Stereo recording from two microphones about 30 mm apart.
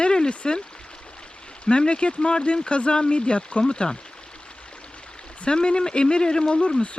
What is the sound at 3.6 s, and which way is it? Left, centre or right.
Speech, left.